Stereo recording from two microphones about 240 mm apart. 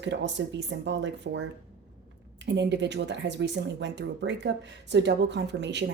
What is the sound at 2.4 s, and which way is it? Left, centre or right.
A woman's voice, right.